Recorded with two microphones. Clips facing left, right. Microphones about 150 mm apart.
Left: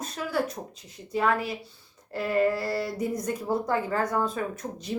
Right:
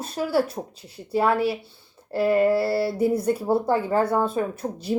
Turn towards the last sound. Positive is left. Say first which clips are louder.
# right 7 dB
turn(degrees=-30)  # may be behind; listen again after turning